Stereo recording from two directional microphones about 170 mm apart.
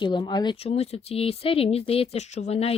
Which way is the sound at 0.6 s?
35° left (ahead or behind).